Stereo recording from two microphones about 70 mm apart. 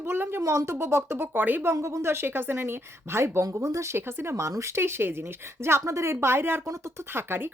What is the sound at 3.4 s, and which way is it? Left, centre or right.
Speech, right.